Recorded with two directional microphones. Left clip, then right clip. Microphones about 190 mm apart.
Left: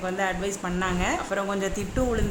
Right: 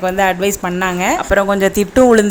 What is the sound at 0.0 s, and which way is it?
Speech, 35° right (ahead or behind).